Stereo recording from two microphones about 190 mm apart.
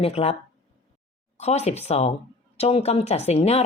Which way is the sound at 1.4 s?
35° left (ahead or behind).